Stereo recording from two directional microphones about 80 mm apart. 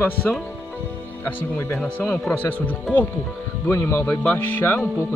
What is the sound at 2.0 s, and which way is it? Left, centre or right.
Speech, centre.